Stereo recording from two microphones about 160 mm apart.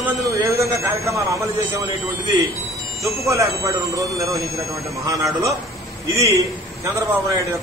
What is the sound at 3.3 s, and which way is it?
A man's voice, 20° right (ahead or behind).